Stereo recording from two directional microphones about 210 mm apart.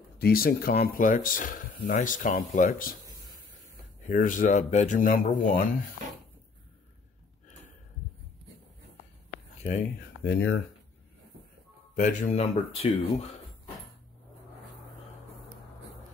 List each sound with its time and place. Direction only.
0.2 s speech: 45° left (ahead or behind)
4.1 s speech: 40° left (ahead or behind)
9.3 s a sound: 30° left (ahead or behind)
9.9 s speech: 50° left (ahead or behind)
11.9 s speech: 35° left (ahead or behind)